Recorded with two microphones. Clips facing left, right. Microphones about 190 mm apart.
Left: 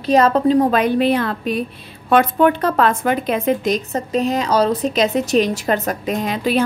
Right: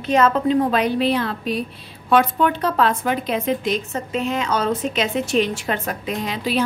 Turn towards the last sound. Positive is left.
turn(degrees=50)  # may be behind; listen again after turning